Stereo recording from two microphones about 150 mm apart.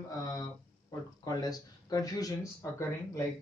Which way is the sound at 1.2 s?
25° left (ahead or behind).